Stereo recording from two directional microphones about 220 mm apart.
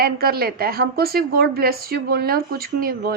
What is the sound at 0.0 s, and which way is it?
A woman's voice, 45° right (ahead or behind).